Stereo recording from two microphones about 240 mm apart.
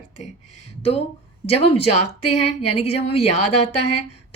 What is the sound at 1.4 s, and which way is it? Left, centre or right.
A woman's voice, left.